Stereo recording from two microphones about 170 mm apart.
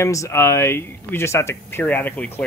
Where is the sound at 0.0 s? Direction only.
15° left (ahead or behind).